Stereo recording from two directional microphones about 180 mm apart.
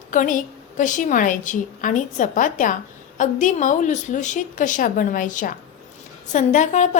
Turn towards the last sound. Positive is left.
turn(degrees=40)  # may be behind; listen again after turning